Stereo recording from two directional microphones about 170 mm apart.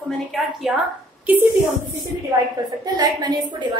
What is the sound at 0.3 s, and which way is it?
Speech, centre (ahead or behind).